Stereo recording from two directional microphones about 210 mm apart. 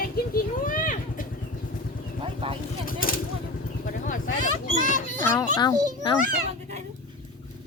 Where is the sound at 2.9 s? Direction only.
40° left (ahead or behind).